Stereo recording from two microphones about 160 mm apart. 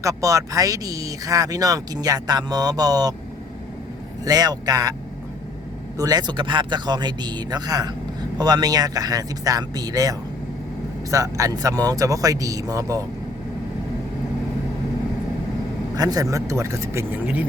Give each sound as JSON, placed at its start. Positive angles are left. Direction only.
{"t": 0.0, "sound": "speech", "side_deg": -20}
{"t": 4.3, "sound": "speech", "side_deg": -25}
{"t": 6.0, "sound": "speech", "side_deg": -25}
{"t": 16.0, "sound": "speech", "side_deg": -25}